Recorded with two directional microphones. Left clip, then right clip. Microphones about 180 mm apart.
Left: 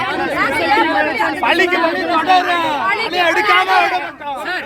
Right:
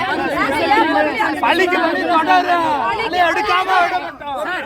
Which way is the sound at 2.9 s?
5° left (ahead or behind).